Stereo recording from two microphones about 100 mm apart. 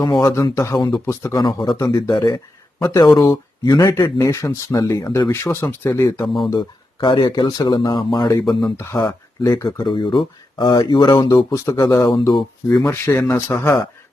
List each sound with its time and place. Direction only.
0.2 s speech: 35° left (ahead or behind)
1.4 s speech: 45° left (ahead or behind)
5.0 s speech: 45° left (ahead or behind)
5.3 s speech: 25° left (ahead or behind)
6.2 s speech: centre (ahead or behind)
6.5 s speech: 50° left (ahead or behind)
8.9 s speech: 30° left (ahead or behind)
9.6 s speech: 50° left (ahead or behind)
11.5 s speech: 35° left (ahead or behind)
12.8 s speech: 20° left (ahead or behind)